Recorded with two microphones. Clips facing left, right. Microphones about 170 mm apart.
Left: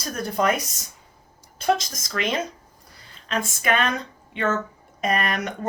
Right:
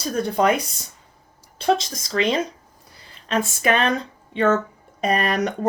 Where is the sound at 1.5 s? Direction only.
30° right (ahead or behind).